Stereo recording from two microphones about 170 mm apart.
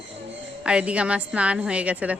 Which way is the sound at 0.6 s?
5° right (ahead or behind).